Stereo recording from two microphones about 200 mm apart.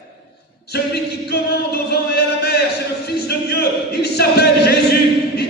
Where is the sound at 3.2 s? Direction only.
50° left (ahead or behind).